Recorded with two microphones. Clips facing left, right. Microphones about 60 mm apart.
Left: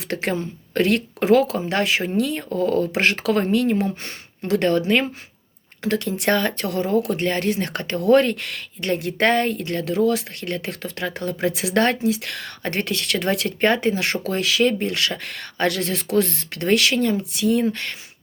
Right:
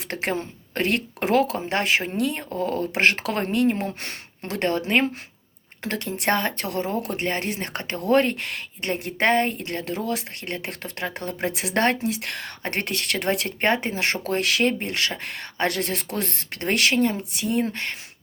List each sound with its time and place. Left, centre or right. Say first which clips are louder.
0.1 s speech: left 3 dB; right
14.7 s speech: left 3 dB; right